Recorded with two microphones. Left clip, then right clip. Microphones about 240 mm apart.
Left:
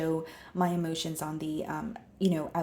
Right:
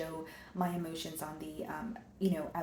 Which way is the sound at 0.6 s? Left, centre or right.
Left.